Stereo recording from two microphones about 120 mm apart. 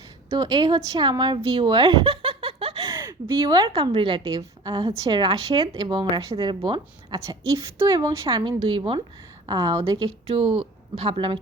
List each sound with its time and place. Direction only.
0.3 s speech: 35° right (ahead or behind); by 2.9 s 50° right (ahead or behind)
2.9 s a sound: 20° right (ahead or behind)
3.4 s a woman's voice: 35° right (ahead or behind)
8.3 s a woman's voice: 40° right (ahead or behind)
10.2 s speech: 50° right (ahead or behind)